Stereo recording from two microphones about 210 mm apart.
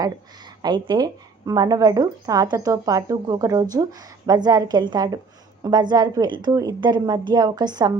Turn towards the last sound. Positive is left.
turn(degrees=-20)  # may be behind; listen again after turning